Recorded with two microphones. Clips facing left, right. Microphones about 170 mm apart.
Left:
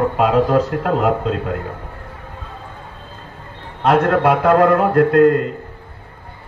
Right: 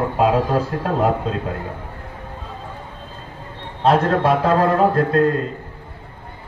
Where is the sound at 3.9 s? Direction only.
70° left (ahead or behind).